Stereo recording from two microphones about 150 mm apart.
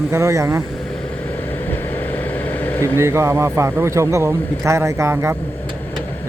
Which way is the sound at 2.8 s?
15° right (ahead or behind).